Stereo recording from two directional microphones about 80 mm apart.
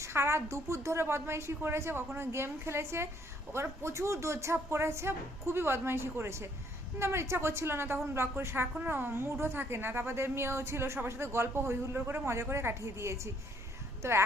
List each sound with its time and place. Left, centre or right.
0.0 s a woman's voice: right